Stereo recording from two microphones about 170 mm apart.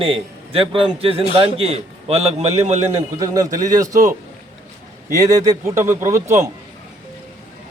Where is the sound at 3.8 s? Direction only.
20° right (ahead or behind).